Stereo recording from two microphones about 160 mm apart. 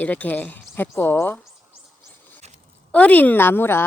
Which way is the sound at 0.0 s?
10° left (ahead or behind).